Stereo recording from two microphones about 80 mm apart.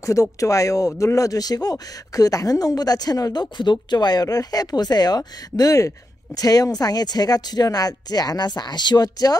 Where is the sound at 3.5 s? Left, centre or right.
Left.